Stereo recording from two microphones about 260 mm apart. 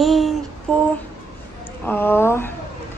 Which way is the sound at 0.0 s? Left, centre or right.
Centre.